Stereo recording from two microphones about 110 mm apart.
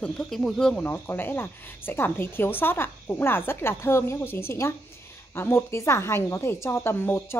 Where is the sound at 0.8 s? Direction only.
20° left (ahead or behind).